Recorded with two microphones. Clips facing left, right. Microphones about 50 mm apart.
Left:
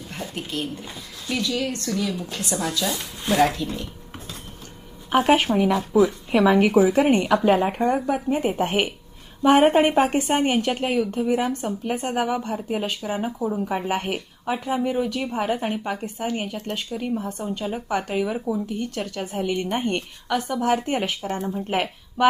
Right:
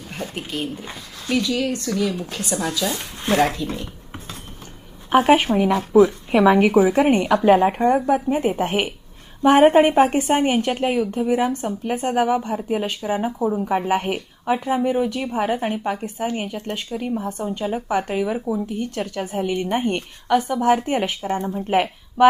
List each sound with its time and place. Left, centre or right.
0.2 s a sound: right
1.6 s speech: centre
2.5 s speech: right
3.3 s speech: right
5.1 s a woman's voice: centre